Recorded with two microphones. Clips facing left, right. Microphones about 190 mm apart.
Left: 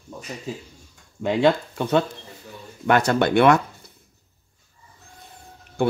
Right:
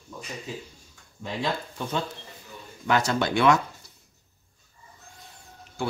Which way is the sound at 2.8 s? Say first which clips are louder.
Left 5 dB; 60° left (ahead or behind).